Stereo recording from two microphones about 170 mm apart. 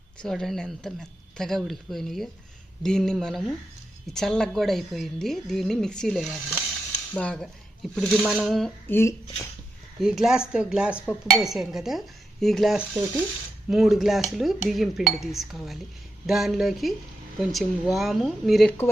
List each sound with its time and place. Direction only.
0.2 s a woman's voice: centre (ahead or behind)
8.9 s speech: 15° left (ahead or behind)
10.0 s a woman's voice: centre (ahead or behind)